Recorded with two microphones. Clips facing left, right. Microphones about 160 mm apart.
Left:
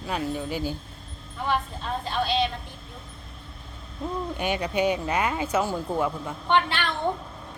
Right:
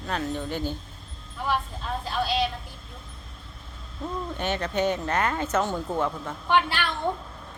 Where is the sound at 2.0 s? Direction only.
5° right (ahead or behind).